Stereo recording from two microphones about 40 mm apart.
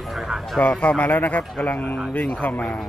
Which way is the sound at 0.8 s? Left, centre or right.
Left.